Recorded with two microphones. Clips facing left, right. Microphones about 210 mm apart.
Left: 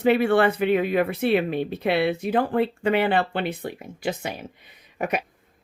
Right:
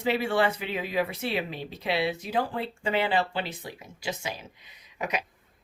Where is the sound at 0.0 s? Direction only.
60° left (ahead or behind).